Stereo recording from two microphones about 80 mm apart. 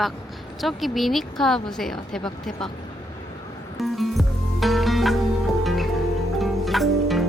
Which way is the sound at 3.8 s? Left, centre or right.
Centre.